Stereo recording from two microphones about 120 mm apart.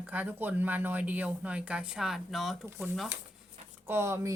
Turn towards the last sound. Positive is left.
turn(degrees=-25)  # may be behind; listen again after turning